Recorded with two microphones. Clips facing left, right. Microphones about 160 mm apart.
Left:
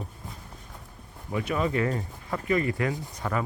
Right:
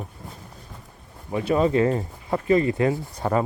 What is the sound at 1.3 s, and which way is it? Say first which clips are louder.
Speech: right 7 dB; 30° right (ahead or behind).